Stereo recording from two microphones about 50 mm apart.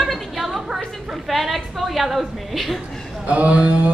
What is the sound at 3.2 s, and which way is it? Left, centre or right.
Speech, right.